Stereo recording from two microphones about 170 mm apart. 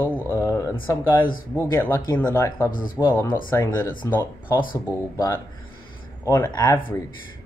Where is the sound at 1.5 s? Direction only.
15° left (ahead or behind).